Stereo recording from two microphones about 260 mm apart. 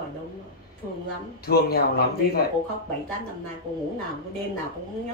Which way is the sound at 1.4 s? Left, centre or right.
Left.